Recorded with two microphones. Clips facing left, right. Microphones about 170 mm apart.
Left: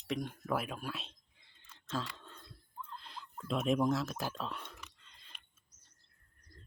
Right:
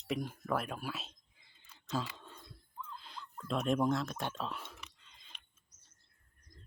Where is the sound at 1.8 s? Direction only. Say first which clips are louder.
Right 2 dB; 10° right (ahead or behind).